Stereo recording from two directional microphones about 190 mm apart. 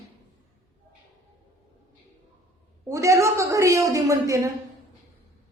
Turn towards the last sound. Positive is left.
turn(degrees=-15)  # may be behind; listen again after turning